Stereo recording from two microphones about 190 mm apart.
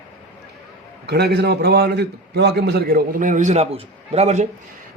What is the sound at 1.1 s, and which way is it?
A man's voice, 60° right (ahead or behind).